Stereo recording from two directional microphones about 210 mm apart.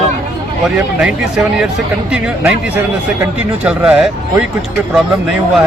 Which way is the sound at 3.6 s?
5° right (ahead or behind).